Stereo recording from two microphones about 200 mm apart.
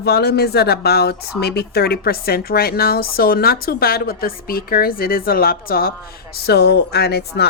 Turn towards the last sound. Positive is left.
turn(degrees=55)  # may be behind; listen again after turning